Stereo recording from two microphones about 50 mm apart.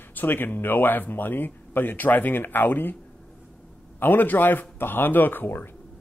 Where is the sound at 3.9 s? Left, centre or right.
Left.